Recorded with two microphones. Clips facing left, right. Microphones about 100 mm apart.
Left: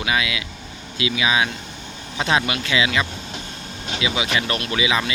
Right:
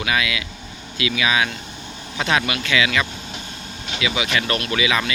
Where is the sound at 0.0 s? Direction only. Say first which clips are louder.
Even; 20° left (ahead or behind).